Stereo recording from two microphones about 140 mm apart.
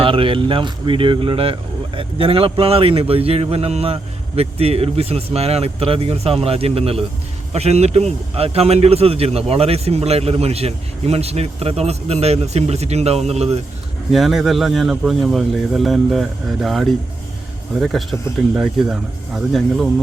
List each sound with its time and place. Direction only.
0.0 s speech: 40° right (ahead or behind)
14.1 s a man's voice: centre (ahead or behind)